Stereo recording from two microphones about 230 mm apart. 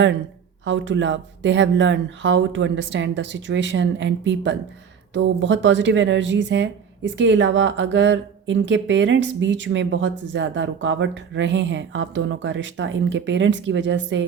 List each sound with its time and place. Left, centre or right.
0.6 s speech: right